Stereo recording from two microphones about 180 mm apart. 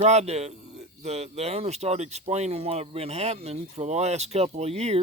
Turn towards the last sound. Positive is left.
turn(degrees=-35)  # may be behind; listen again after turning